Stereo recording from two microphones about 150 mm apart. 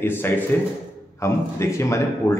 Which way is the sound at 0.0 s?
15° left (ahead or behind).